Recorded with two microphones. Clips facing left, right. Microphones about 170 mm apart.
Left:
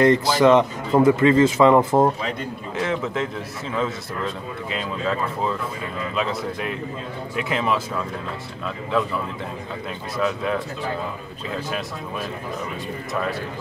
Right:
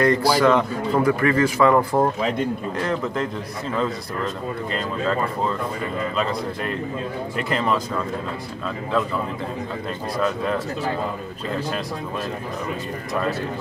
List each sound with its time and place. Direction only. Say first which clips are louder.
0.0 s speech: left 1 dB; 20° left (ahead or behind)
2.8 s speech: left 2 dB; 5° left (ahead or behind)
6.1 s a man's voice: right 1 dB; 5° left (ahead or behind)
10.1 s speech: even; 5° left (ahead or behind)